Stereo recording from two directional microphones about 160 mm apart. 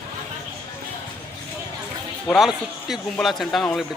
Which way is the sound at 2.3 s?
Centre (ahead or behind).